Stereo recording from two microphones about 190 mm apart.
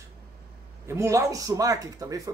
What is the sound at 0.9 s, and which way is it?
Speech, 15° right (ahead or behind).